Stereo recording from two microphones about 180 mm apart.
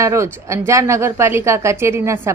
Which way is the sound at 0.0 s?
15° right (ahead or behind).